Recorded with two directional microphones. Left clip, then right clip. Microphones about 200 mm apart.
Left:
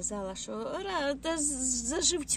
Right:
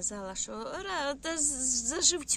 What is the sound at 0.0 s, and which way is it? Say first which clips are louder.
Speech: left 1 dB; centre (ahead or behind).